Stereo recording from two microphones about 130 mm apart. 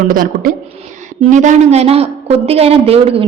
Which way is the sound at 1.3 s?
70° right (ahead or behind).